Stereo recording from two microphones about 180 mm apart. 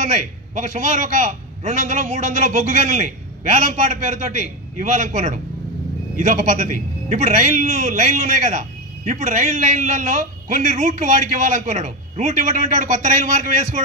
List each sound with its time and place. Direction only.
0.0 s a man's voice: 45° right (ahead or behind)